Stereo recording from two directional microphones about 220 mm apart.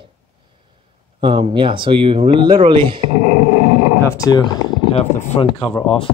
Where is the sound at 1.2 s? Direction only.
20° right (ahead or behind).